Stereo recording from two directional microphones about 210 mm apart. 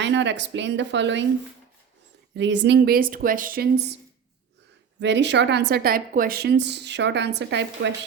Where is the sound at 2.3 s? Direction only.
55° right (ahead or behind).